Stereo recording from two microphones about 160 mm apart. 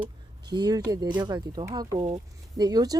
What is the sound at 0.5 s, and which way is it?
Speech, 25° right (ahead or behind).